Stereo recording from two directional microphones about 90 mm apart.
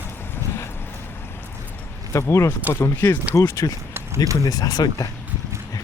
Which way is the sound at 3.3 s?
40° left (ahead or behind).